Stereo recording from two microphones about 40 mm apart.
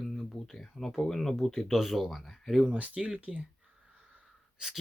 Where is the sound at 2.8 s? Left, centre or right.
Right.